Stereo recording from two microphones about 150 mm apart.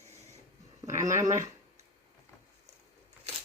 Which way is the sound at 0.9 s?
20° right (ahead or behind).